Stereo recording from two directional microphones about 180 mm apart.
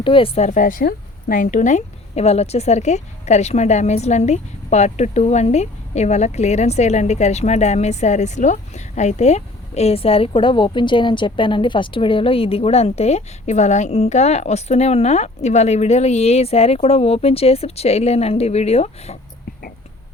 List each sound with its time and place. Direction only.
0.0 s a woman's voice: 30° left (ahead or behind)